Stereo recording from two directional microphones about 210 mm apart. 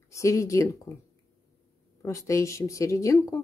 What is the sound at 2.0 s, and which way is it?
Speech, 15° left (ahead or behind).